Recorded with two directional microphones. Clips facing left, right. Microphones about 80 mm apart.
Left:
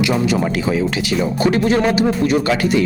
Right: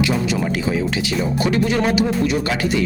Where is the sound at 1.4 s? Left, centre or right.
Left.